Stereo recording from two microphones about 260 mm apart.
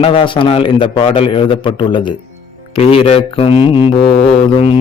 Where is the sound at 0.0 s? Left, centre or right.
Left.